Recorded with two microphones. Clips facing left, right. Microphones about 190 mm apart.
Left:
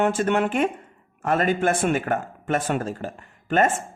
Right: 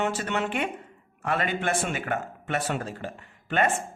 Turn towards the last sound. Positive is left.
turn(degrees=45)  # may be behind; listen again after turning